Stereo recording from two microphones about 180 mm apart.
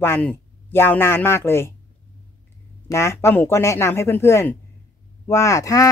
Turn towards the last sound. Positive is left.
turn(degrees=20)  # may be behind; listen again after turning